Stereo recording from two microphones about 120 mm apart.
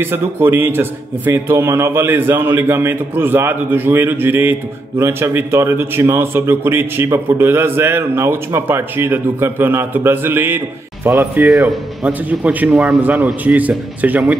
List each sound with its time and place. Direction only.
0.0 s a man's voice: 20° right (ahead or behind)